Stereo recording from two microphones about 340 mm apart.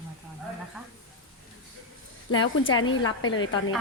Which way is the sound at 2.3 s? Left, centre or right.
Left.